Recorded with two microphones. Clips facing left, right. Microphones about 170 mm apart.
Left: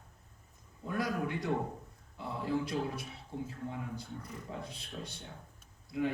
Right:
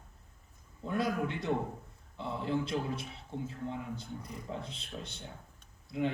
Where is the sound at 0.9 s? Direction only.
25° right (ahead or behind).